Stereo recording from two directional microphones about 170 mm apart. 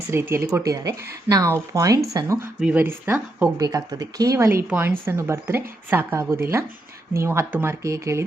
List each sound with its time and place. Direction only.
0.1 s a woman's voice: 15° right (ahead or behind)